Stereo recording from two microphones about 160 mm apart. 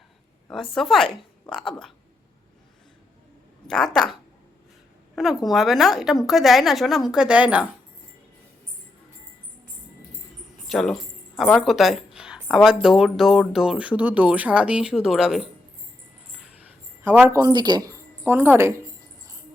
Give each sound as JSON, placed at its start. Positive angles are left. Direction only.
{"t": 0.8, "sound": "a woman's voice", "side_deg": 0}
{"t": 3.7, "sound": "speech", "side_deg": 5}
{"t": 10.7, "sound": "speech", "side_deg": 0}
{"t": 17.0, "sound": "a woman's voice", "side_deg": -10}